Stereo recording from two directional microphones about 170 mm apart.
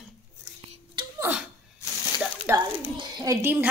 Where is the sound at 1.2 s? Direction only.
10° right (ahead or behind).